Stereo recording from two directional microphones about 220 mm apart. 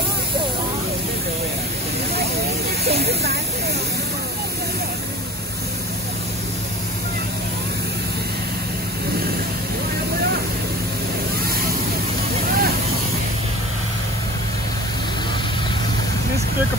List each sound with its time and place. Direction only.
2.8 s speech: 45° right (ahead or behind)
12.4 s vehicle: 40° right (ahead or behind)